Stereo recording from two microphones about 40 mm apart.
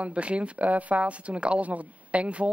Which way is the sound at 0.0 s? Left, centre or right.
Right.